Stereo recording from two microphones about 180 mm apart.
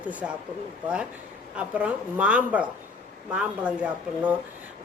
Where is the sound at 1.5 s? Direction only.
10° right (ahead or behind).